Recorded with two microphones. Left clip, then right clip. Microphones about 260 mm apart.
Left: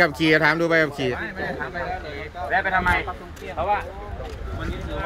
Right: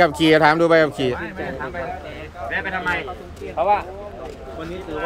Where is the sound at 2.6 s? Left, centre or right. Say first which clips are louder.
Left 3 dB; centre.